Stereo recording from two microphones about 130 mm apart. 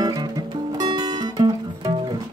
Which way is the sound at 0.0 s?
30° right (ahead or behind).